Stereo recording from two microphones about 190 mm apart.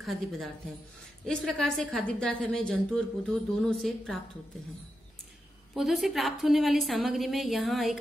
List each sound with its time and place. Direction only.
1.2 s a woman's voice: 5° left (ahead or behind)
5.8 s a woman's voice: centre (ahead or behind)